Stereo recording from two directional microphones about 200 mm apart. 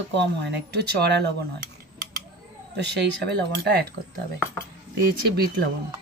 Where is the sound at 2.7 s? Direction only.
60° right (ahead or behind).